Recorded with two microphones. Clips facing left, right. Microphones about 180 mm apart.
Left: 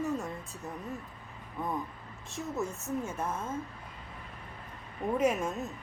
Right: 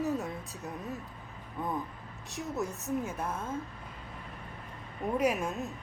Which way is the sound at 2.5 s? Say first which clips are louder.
Even; 15° right (ahead or behind).